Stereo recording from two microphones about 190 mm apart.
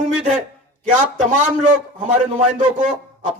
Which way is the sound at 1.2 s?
5° right (ahead or behind).